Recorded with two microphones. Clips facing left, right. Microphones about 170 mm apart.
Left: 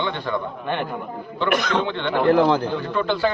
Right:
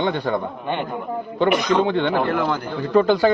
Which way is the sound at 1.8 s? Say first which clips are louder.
Right 5 dB; 40° right (ahead or behind).